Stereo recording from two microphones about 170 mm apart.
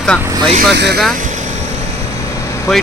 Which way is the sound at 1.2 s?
45° right (ahead or behind).